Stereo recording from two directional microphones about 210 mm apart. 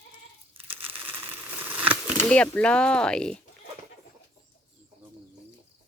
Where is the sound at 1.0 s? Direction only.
10° right (ahead or behind).